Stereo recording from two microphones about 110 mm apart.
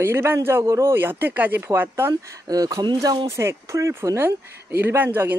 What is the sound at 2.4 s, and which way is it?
Speech, 35° right (ahead or behind).